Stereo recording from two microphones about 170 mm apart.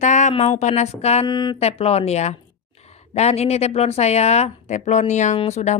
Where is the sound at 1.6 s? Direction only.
35° left (ahead or behind).